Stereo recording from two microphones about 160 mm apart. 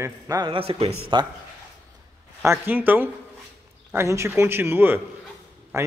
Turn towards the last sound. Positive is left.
turn(degrees=-20)  # may be behind; listen again after turning